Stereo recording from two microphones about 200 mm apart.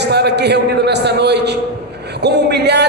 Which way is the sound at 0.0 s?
55° right (ahead or behind).